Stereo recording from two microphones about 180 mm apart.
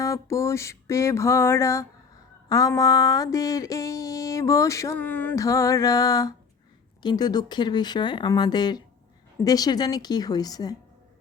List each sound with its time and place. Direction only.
0.0 s mantra: 15° left (ahead or behind)
7.0 s speech: 25° left (ahead or behind)